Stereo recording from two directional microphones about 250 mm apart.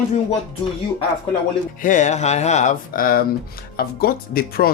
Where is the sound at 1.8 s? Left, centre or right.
Left.